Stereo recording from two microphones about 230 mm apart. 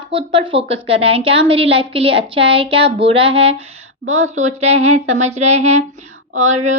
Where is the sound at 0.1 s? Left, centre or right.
Right.